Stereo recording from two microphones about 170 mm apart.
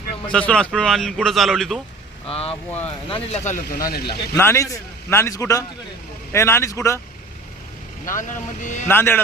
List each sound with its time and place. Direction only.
0.3 s a man's voice: 5° left (ahead or behind)
2.2 s speech: 35° left (ahead or behind)
3.7 s speech: 60° left (ahead or behind)
4.4 s a man's voice: 15° left (ahead or behind)
8.1 s a man's voice: 50° left (ahead or behind)
8.9 s a man's voice: 10° left (ahead or behind)